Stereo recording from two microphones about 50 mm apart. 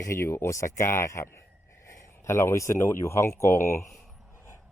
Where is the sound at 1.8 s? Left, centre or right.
Left.